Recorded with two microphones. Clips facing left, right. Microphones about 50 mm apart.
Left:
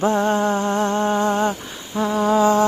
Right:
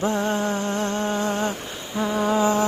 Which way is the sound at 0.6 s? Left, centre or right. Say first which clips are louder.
Left 5 dB; left.